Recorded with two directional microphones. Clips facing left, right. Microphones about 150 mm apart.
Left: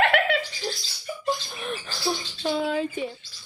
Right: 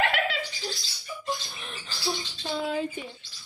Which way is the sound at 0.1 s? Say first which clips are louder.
Left 5 dB; 60° left (ahead or behind).